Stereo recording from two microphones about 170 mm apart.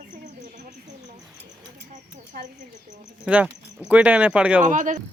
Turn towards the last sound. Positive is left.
turn(degrees=-50)  # may be behind; listen again after turning